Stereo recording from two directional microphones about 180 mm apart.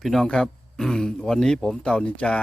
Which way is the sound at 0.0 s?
Centre (ahead or behind).